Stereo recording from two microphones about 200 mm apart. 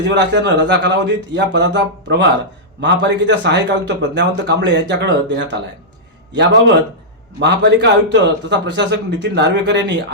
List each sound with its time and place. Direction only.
0.0 s a man's voice: 60° right (ahead or behind)
6.3 s a man's voice: 60° right (ahead or behind)